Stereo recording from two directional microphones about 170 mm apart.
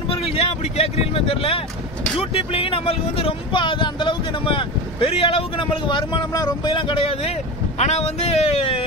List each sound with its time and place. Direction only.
0.1 s speech: 35° left (ahead or behind)